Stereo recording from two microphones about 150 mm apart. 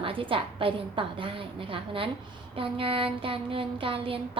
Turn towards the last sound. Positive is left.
turn(degrees=-35)  # may be behind; listen again after turning